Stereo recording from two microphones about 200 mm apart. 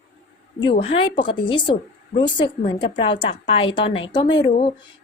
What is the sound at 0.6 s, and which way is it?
A woman's voice, 30° left (ahead or behind).